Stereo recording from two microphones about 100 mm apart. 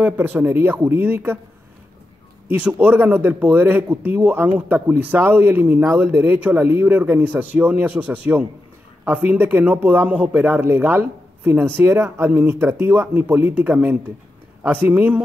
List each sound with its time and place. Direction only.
0.0 s speech: 20° right (ahead or behind)
2.6 s speech: 15° right (ahead or behind)